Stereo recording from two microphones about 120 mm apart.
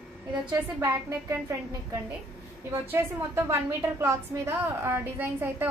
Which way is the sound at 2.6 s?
20° right (ahead or behind).